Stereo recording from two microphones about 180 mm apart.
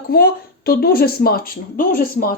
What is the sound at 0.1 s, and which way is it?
Speech, 60° left (ahead or behind).